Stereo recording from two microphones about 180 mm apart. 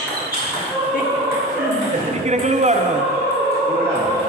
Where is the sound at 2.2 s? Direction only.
40° right (ahead or behind).